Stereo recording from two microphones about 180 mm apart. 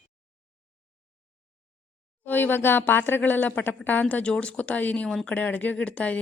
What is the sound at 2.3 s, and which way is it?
A woman's voice, 10° left (ahead or behind).